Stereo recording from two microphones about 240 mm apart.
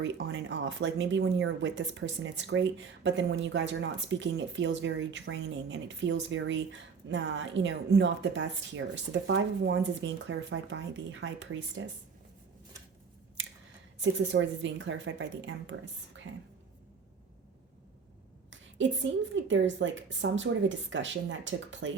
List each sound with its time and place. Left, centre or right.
0.0 s a woman's voice: right
14.0 s a woman's voice: right
18.8 s a woman's voice: right